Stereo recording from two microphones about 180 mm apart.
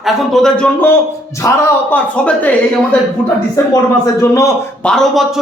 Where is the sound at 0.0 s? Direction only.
Centre (ahead or behind).